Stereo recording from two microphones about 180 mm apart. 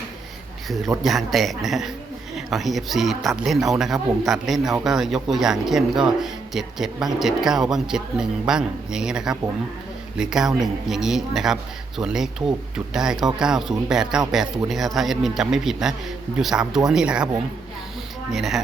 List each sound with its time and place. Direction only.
1.0 s speech: centre (ahead or behind)
18.3 s speech: centre (ahead or behind)